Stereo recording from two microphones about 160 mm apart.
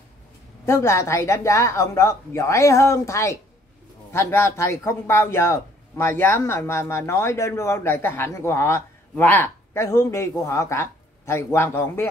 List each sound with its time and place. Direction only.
0.7 s speech: 15° left (ahead or behind)